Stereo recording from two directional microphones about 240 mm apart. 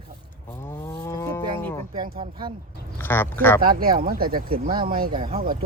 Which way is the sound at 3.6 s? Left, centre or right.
Right.